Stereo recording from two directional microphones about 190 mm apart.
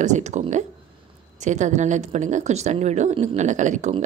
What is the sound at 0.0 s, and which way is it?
Speech, 40° right (ahead or behind).